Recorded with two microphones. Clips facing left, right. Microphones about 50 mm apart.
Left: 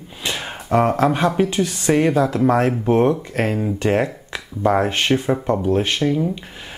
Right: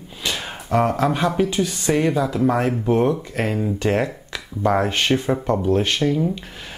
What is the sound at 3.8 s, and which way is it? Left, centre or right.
Speech, centre.